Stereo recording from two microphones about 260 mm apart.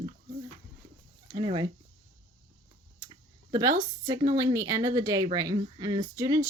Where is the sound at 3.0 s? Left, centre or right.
Centre.